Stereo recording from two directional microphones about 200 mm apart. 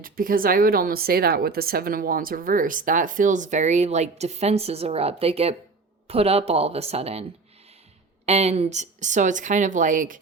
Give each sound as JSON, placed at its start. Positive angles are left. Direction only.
{"t": 0.0, "sound": "speech", "side_deg": -45}
{"t": 8.3, "sound": "speech", "side_deg": -30}